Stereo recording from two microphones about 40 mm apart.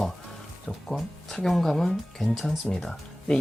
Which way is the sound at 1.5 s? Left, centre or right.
Centre.